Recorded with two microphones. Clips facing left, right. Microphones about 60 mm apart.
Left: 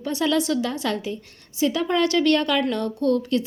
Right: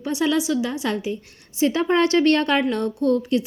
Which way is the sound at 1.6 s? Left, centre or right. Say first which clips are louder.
Right 2 dB; right.